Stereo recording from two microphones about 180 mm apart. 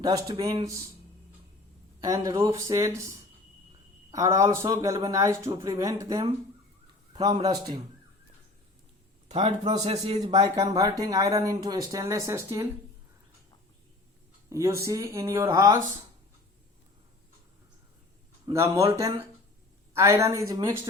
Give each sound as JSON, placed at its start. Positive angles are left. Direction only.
{"t": 0.0, "sound": "speech", "side_deg": -20}
{"t": 2.0, "sound": "speech", "side_deg": -20}
{"t": 7.4, "sound": "speech", "side_deg": -20}
{"t": 9.3, "sound": "speech", "side_deg": -30}
{"t": 14.5, "sound": "speech", "side_deg": -15}
{"t": 18.4, "sound": "speech", "side_deg": -15}